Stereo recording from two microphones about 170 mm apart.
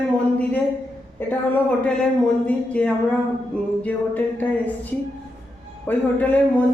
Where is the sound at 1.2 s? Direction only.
10° left (ahead or behind).